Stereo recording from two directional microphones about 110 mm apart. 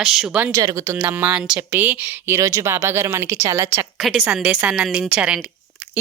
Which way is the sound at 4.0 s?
Centre (ahead or behind).